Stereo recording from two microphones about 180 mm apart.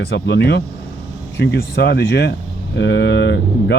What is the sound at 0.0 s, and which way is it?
Speech, 70° left (ahead or behind).